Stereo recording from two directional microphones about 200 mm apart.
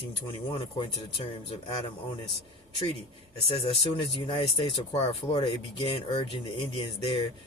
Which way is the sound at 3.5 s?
25° left (ahead or behind).